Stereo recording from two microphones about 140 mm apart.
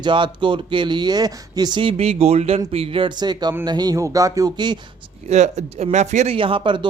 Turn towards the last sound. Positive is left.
turn(degrees=-35)  # may be behind; listen again after turning